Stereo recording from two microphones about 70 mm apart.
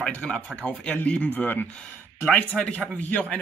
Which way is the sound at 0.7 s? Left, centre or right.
Left.